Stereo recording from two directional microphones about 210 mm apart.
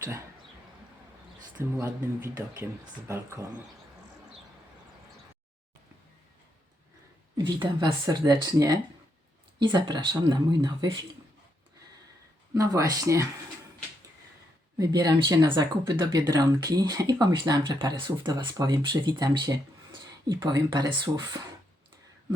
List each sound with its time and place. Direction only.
1.5 s speech: 10° right (ahead or behind)
7.6 s speech: 20° right (ahead or behind)
12.5 s speech: 15° right (ahead or behind)
14.8 s speech: 15° right (ahead or behind)